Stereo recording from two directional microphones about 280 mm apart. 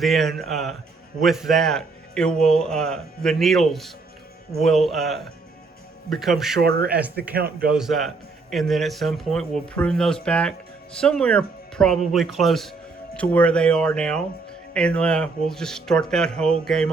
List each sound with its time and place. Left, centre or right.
0.0 s speech: centre
6.6 s speech: right
7.7 s speech: centre